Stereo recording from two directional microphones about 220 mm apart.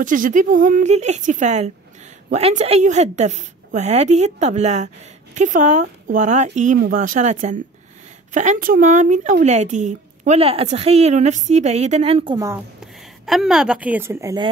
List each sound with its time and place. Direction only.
0.0 s speech: 35° right (ahead or behind)
12.4 s speech: 10° right (ahead or behind)
12.8 s a woman's voice: centre (ahead or behind)